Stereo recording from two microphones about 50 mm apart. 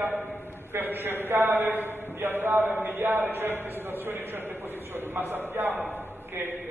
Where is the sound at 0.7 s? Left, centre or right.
Right.